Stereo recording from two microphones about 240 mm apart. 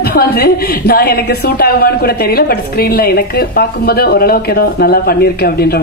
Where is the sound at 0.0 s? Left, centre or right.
Left.